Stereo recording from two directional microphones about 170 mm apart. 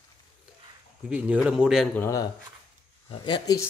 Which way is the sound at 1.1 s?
5° right (ahead or behind).